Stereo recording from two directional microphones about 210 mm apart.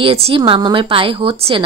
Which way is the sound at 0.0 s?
25° right (ahead or behind).